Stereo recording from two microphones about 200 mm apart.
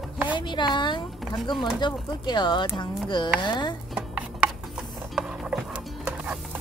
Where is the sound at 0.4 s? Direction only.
25° left (ahead or behind).